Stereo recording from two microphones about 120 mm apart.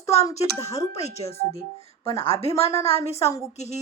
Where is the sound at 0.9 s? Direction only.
65° left (ahead or behind).